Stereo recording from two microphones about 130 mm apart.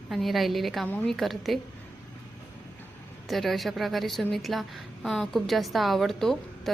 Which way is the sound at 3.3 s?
Centre (ahead or behind).